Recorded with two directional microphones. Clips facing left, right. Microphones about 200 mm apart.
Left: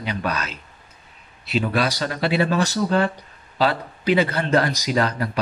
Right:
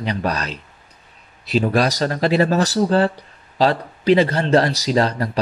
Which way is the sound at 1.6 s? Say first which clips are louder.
Right 5 dB; 40° right (ahead or behind).